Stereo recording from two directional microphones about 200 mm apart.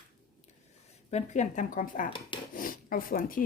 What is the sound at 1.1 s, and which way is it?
Speech, 35° left (ahead or behind).